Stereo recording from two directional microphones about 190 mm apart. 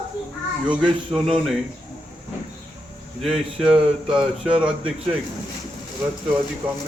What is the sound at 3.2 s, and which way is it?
Speech, centre (ahead or behind).